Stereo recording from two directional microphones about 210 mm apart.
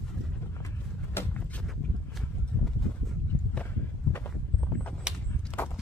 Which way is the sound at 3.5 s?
10° left (ahead or behind).